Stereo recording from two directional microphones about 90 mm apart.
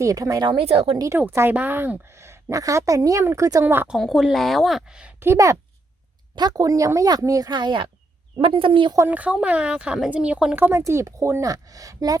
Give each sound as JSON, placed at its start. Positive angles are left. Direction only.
{"t": 0.0, "sound": "a woman's voice", "side_deg": -40}
{"t": 0.5, "sound": "speech", "side_deg": -90}
{"t": 1.3, "sound": "a woman's voice", "side_deg": -30}
{"t": 3.8, "sound": "speech", "side_deg": 0}
{"t": 5.2, "sound": "a woman's voice", "side_deg": -30}
{"t": 6.3, "sound": "a woman's voice", "side_deg": -45}
{"t": 8.4, "sound": "speech", "side_deg": -90}
{"t": 9.0, "sound": "speech", "side_deg": -15}